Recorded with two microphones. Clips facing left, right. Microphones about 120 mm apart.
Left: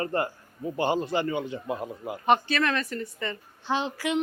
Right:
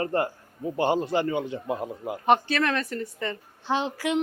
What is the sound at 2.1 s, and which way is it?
A man's voice, 45° right (ahead or behind).